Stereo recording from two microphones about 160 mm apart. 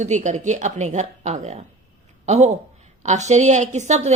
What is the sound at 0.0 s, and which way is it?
A woman's voice, 50° right (ahead or behind).